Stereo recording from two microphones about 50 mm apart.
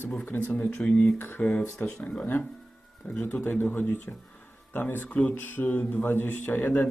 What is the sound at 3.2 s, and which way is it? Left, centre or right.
Speech, left.